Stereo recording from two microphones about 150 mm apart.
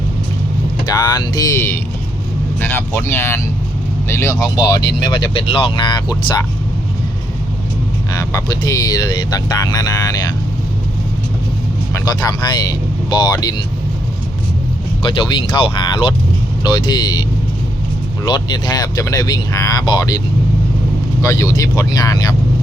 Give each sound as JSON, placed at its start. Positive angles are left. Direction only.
{"t": 0.9, "sound": "speech", "side_deg": 25}
{"t": 8.1, "sound": "speech", "side_deg": 20}
{"t": 11.9, "sound": "speech", "side_deg": 25}
{"t": 15.1, "sound": "speech", "side_deg": 35}
{"t": 18.3, "sound": "speech", "side_deg": 30}